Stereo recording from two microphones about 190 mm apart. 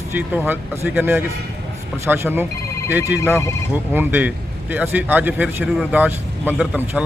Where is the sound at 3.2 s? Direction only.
15° left (ahead or behind).